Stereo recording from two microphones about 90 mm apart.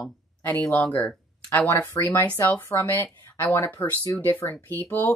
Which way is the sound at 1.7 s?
30° left (ahead or behind).